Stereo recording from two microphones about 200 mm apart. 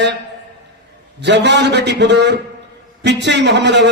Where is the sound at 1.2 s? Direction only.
60° right (ahead or behind).